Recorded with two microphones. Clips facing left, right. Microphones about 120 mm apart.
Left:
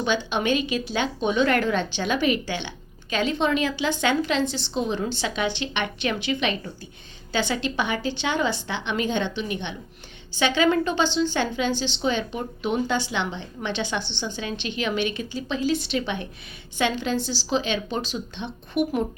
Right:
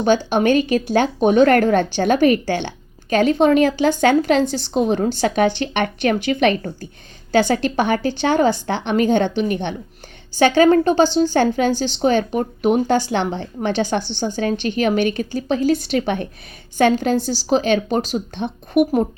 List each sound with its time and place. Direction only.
0.0 s speech: 45° right (ahead or behind)